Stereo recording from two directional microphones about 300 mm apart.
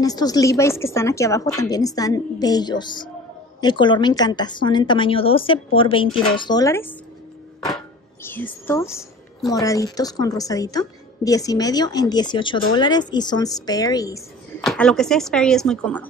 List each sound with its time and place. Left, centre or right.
0.0 s a woman's voice: centre
7.7 s music: centre
8.6 s a woman's voice: centre
14.6 s speech: centre